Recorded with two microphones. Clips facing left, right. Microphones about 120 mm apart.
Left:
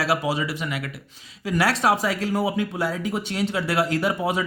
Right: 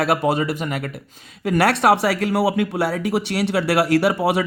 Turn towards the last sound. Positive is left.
turn(degrees=-70)  # may be behind; listen again after turning